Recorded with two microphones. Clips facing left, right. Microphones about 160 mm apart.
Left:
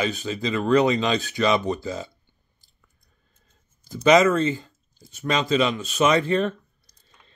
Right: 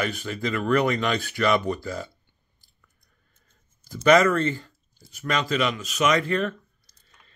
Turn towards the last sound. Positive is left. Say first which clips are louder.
# left 3 dB
turn(degrees=30)  # may be behind; listen again after turning